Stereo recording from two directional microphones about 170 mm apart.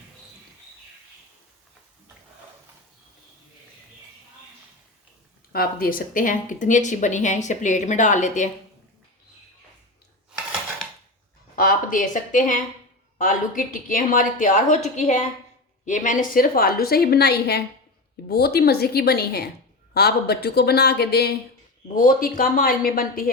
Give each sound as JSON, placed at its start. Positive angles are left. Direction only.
{"t": 5.5, "sound": "speech", "side_deg": 60}
{"t": 11.5, "sound": "a woman's voice", "side_deg": 55}
{"t": 21.9, "sound": "a woman's voice", "side_deg": 55}